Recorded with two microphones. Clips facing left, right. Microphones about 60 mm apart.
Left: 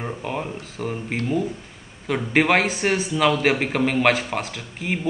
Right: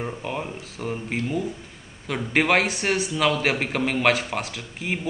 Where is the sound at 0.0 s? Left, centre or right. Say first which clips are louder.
Left 1 dB; centre.